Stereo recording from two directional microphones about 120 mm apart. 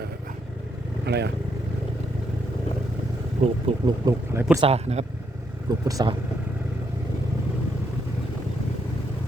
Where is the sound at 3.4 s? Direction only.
50° right (ahead or behind).